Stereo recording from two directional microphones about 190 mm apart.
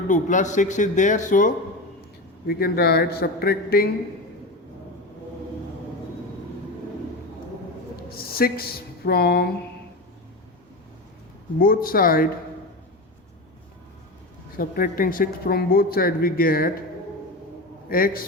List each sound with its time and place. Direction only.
0.1 s speech: 40° left (ahead or behind)
7.9 s speech: 50° left (ahead or behind)
11.6 s speech: 50° left (ahead or behind)
14.5 s speech: 50° left (ahead or behind)
17.8 s speech: 50° left (ahead or behind)